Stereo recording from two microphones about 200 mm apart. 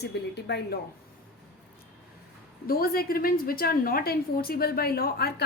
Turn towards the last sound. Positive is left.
turn(degrees=50)  # may be behind; listen again after turning